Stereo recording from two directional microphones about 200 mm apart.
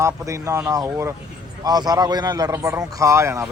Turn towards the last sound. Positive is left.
turn(degrees=-15)  # may be behind; listen again after turning